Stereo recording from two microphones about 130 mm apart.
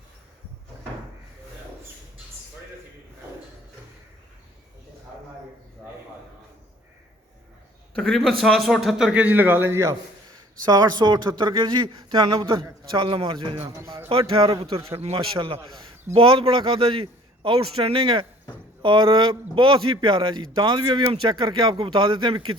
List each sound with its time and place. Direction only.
7.9 s a man's voice: 5° left (ahead or behind); by 9.9 s 20° right (ahead or behind)
10.7 s a man's voice: 30° right (ahead or behind)
13.7 s a man's voice: 20° right (ahead or behind)
14.1 s a man's voice: 45° right (ahead or behind)